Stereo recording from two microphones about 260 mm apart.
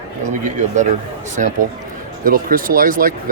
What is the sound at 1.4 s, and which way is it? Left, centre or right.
A man's voice, right.